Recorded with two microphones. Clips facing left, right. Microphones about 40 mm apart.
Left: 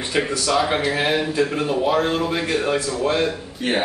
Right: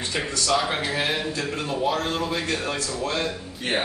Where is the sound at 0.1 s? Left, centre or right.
Centre.